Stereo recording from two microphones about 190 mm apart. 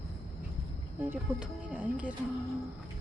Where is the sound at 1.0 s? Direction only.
5° right (ahead or behind).